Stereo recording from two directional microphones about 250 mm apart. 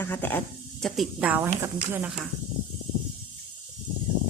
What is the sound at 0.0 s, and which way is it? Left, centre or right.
Speech, centre.